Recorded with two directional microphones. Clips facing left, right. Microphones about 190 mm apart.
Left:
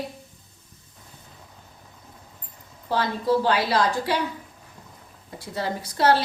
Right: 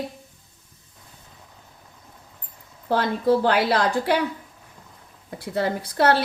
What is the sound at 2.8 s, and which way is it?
A woman's voice, 55° right (ahead or behind).